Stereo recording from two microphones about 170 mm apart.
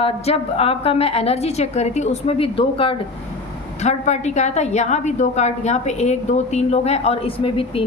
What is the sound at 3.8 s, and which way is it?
A woman's voice, 45° left (ahead or behind).